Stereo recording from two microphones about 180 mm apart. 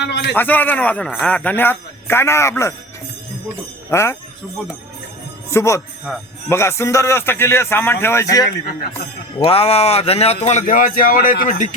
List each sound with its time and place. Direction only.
0.0 s a man's voice: 70° left (ahead or behind)
0.3 s speech: 10° left (ahead or behind)
3.8 s speech: 15° left (ahead or behind)
5.5 s speech: 15° left (ahead or behind)
9.4 s speech: 35° left (ahead or behind)